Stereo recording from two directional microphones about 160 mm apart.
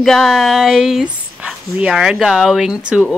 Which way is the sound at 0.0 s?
Centre (ahead or behind).